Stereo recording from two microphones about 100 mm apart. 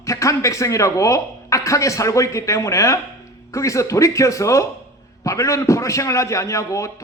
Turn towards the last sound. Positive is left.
turn(degrees=30)  # may be behind; listen again after turning